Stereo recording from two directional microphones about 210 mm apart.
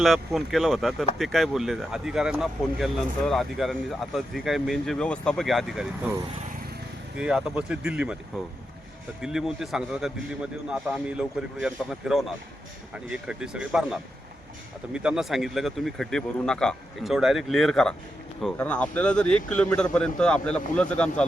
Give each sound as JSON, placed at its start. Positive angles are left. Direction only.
{"t": 0.0, "sound": "speech", "side_deg": 0}
{"t": 7.2, "sound": "speech", "side_deg": -5}
{"t": 9.2, "sound": "speech", "side_deg": 0}